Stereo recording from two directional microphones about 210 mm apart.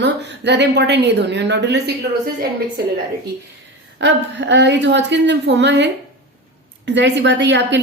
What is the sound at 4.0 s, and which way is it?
A woman's voice, 55° right (ahead or behind).